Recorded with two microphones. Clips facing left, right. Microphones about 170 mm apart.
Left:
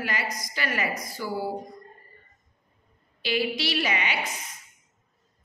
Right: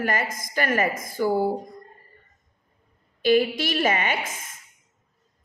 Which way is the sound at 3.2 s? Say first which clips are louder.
Right 7 dB; 50° right (ahead or behind).